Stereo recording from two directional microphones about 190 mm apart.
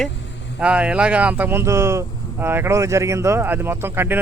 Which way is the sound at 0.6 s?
5° right (ahead or behind).